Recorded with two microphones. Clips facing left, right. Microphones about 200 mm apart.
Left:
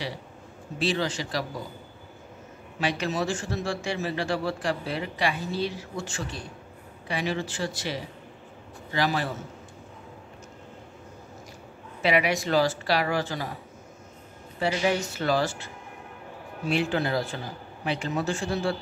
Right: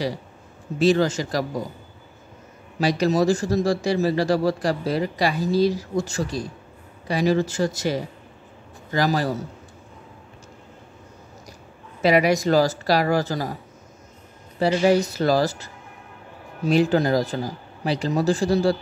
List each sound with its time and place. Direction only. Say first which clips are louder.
0.7 s speech: right 9 dB; 45° right (ahead or behind)
2.8 s a man's voice: right 8 dB; 40° right (ahead or behind)
12.0 s a man's voice: right 6 dB; 40° right (ahead or behind)
14.6 s a man's voice: right 7 dB; 40° right (ahead or behind)